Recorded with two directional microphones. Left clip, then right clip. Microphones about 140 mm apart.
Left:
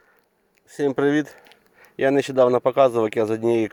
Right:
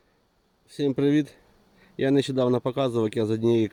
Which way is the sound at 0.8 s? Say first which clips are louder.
Left 3 dB; 20° right (ahead or behind).